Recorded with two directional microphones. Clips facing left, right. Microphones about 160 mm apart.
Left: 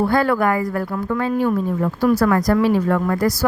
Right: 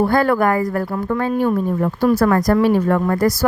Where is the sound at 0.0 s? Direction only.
45° right (ahead or behind).